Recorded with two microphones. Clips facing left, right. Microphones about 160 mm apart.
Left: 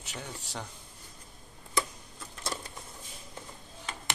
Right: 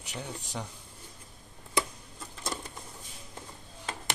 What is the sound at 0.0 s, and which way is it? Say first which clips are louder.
Speech: right 2 dB; 15° right (ahead or behind).